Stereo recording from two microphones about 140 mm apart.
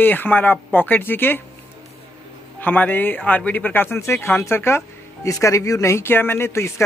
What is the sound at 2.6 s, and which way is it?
Speech, 10° left (ahead or behind).